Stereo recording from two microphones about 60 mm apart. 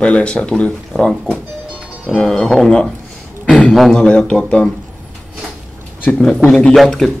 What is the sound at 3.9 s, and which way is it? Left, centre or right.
Speech, centre.